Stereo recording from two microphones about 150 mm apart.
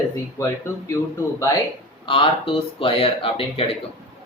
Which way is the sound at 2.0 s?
35° left (ahead or behind).